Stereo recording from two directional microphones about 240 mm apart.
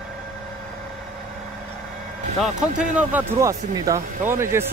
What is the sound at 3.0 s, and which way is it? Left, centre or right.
Speech, centre.